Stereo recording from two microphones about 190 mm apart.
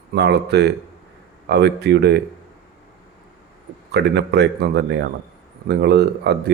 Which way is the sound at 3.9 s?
60° right (ahead or behind).